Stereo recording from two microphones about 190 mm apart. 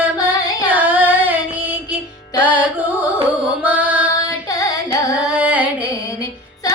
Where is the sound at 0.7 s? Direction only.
10° right (ahead or behind).